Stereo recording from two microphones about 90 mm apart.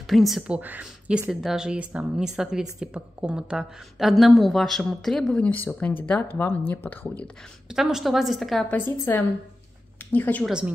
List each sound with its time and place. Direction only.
0.0 s speech: centre (ahead or behind)
1.3 s speech: 5° right (ahead or behind); by 7.2 s 20° left (ahead or behind)
7.7 s speech: 5° right (ahead or behind)
9.1 s speech: 30° left (ahead or behind)